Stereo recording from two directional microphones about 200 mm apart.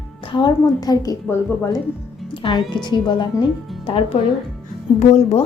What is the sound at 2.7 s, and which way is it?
Speech, 20° left (ahead or behind).